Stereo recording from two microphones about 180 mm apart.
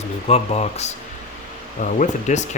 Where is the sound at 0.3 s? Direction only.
35° left (ahead or behind).